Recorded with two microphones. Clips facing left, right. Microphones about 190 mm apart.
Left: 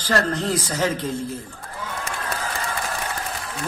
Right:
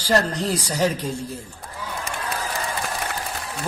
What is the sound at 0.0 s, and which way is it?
Speech, 10° right (ahead or behind).